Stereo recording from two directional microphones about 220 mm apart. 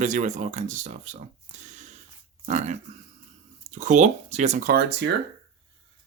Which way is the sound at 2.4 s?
35° right (ahead or behind).